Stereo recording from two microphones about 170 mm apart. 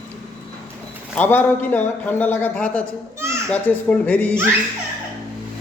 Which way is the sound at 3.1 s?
15° right (ahead or behind).